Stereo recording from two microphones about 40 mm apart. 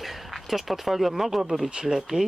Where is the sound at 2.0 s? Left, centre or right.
Centre.